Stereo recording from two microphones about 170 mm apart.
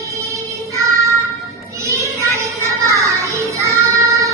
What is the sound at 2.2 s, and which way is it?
Music, 15° right (ahead or behind).